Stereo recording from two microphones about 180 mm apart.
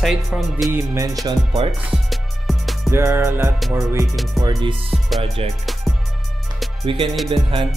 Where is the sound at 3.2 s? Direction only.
15° right (ahead or behind).